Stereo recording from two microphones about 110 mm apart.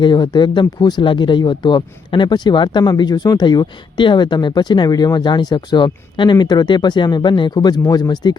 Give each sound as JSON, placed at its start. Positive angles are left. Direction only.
{"t": 0.0, "sound": "speech", "side_deg": 45}